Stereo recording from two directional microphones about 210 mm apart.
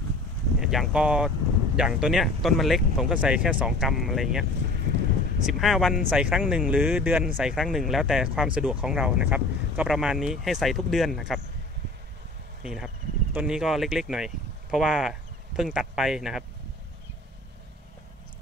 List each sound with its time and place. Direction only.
0.6 s speech: centre (ahead or behind)
12.6 s speech: 5° right (ahead or behind)